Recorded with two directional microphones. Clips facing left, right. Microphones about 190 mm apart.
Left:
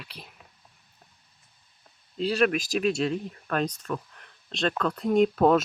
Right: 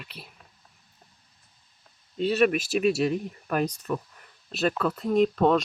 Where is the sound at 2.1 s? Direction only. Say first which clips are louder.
Right 2 dB; centre (ahead or behind).